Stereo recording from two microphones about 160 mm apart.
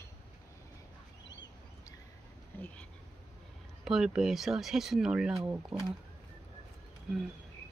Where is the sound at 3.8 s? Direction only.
Centre (ahead or behind).